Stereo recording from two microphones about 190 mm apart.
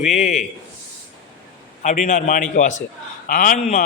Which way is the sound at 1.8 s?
40° left (ahead or behind).